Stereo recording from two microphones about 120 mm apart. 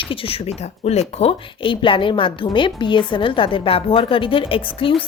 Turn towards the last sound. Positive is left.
turn(degrees=45)  # may be behind; listen again after turning